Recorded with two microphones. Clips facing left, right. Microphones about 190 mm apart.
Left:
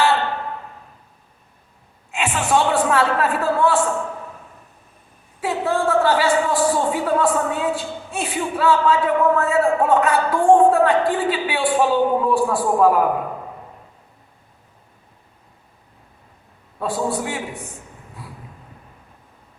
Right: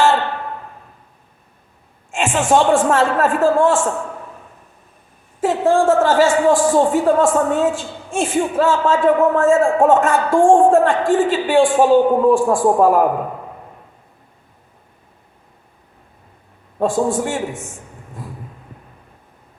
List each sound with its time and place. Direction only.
2.0 s a man's voice: 45° right (ahead or behind)
5.4 s a man's voice: 45° right (ahead or behind)
16.7 s a man's voice: 45° right (ahead or behind)